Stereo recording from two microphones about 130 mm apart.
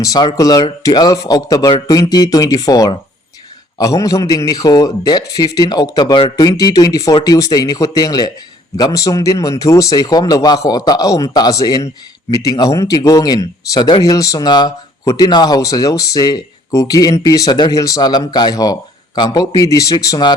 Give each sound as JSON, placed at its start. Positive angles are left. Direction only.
{"t": 0.0, "sound": "speech", "side_deg": 30}